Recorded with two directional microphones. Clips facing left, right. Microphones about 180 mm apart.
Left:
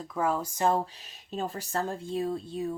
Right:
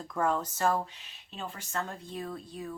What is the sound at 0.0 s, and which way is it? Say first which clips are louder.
Speech: left 1 dB; 5° left (ahead or behind).